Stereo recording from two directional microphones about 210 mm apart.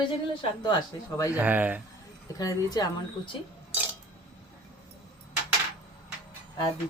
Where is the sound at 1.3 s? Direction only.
10° right (ahead or behind).